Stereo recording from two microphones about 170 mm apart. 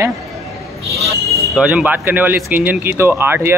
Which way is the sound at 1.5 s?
5° right (ahead or behind).